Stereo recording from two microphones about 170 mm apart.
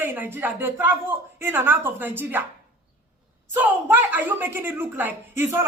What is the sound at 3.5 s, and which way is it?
A man's voice, 15° right (ahead or behind).